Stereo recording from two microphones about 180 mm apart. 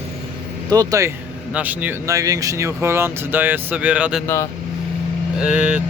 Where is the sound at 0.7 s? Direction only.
20° right (ahead or behind).